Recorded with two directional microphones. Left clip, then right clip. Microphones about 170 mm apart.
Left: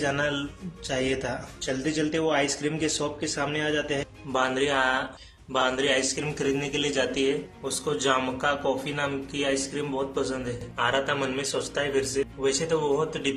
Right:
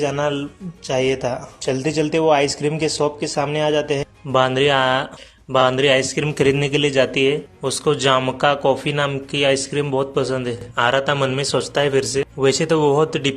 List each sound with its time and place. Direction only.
0.0 s a man's voice: 30° right (ahead or behind); by 13.3 s 50° right (ahead or behind)